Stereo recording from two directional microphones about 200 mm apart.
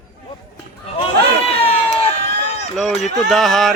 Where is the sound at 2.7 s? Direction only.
Centre (ahead or behind).